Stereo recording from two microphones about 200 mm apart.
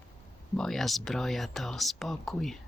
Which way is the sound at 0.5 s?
Centre (ahead or behind).